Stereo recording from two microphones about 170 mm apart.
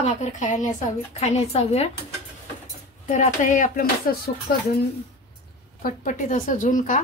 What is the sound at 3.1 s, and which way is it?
Speech, 45° left (ahead or behind).